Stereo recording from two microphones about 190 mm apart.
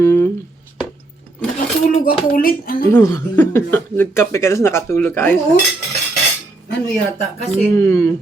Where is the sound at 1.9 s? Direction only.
50° left (ahead or behind).